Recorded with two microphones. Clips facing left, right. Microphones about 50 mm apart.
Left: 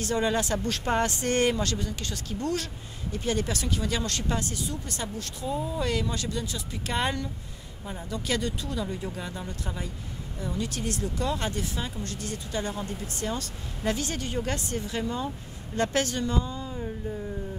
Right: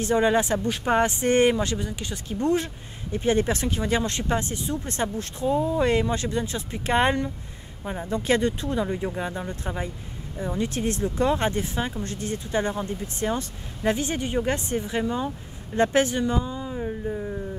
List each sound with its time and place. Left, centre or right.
0.0 s speech: right